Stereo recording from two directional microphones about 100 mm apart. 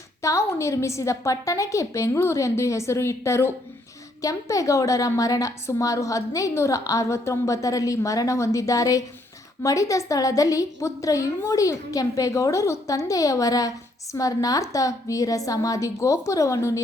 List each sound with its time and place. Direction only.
0.2 s a woman's voice: 30° left (ahead or behind)